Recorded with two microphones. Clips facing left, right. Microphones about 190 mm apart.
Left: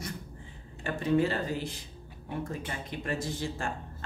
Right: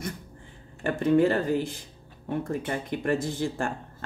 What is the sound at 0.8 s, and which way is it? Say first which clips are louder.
Speech: right 6 dB; 50° right (ahead or behind).